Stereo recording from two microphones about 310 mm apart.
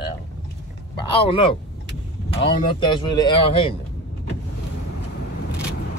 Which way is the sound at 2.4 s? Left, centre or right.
Centre.